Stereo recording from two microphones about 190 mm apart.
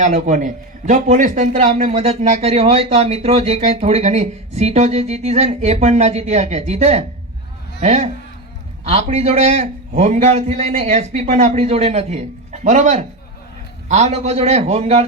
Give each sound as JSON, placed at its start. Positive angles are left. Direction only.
{"t": 0.0, "sound": "a man's voice", "side_deg": -40}